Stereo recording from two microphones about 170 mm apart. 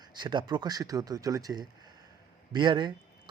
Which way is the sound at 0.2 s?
25° right (ahead or behind).